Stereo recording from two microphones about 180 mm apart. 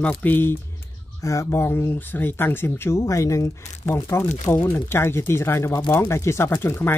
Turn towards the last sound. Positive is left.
turn(degrees=10)  # may be behind; listen again after turning